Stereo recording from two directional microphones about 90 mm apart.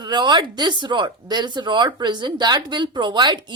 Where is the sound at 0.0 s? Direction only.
55° right (ahead or behind).